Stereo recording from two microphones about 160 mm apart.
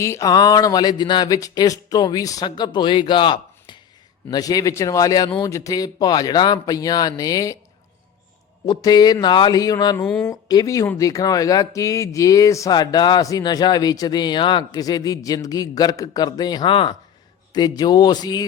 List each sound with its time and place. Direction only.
0.0 s speech: 20° left (ahead or behind)
8.6 s speech: 25° left (ahead or behind)
10.0 s speech: 5° left (ahead or behind)
10.2 s speech: 20° left (ahead or behind)